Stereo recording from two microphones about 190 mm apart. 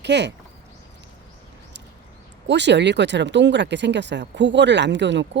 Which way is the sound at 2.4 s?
65° right (ahead or behind).